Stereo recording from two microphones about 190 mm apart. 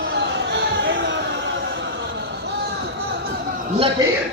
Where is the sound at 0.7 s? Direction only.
70° right (ahead or behind).